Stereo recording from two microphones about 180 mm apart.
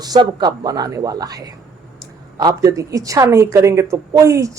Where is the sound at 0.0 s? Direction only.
25° right (ahead or behind).